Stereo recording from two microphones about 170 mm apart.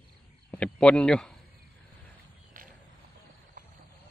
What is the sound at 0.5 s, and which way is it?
Speech, 5° left (ahead or behind).